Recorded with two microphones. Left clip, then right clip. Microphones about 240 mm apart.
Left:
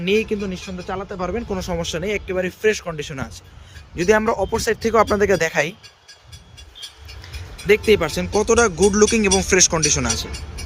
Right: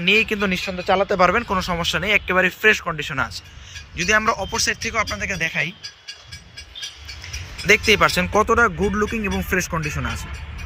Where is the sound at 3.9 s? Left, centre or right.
Centre.